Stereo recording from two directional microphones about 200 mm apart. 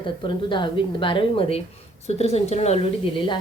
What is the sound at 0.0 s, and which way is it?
A woman's voice, 25° left (ahead or behind).